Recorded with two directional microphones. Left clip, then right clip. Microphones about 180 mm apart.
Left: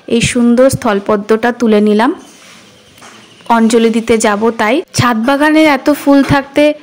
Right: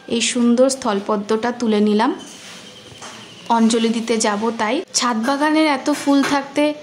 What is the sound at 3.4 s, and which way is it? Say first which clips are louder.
A woman's voice: left 8 dB; 30° left (ahead or behind).